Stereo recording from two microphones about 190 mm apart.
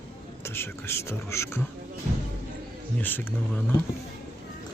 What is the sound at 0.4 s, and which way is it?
Speech, 15° left (ahead or behind).